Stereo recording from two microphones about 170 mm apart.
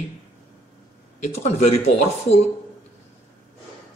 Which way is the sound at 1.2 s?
40° left (ahead or behind).